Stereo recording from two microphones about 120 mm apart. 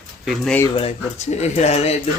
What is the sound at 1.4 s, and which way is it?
Speech, 70° left (ahead or behind).